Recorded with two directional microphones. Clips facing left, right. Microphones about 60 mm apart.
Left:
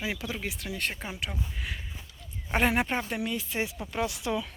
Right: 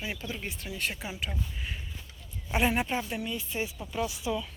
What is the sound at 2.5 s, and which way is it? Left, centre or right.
Speech, left.